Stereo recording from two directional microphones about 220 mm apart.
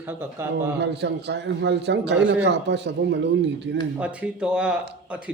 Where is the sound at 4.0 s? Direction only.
5° right (ahead or behind).